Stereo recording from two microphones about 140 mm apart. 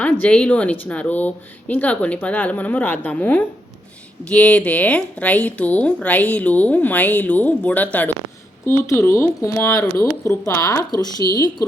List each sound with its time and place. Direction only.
0.0 s speech: 10° left (ahead or behind); by 11.3 s 25° left (ahead or behind)